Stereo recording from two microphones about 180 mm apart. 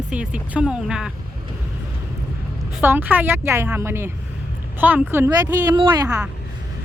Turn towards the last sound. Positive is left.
turn(degrees=-25)  # may be behind; listen again after turning